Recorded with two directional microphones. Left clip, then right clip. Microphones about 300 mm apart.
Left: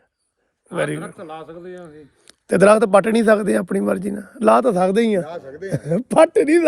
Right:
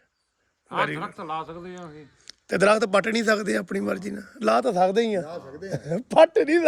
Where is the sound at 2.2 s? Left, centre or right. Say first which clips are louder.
Left 7 dB; centre.